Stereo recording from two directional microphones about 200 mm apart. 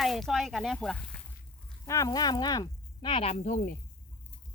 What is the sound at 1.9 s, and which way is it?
Speech, 15° left (ahead or behind).